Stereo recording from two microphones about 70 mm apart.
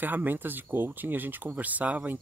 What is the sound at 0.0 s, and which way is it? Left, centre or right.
Speech, right.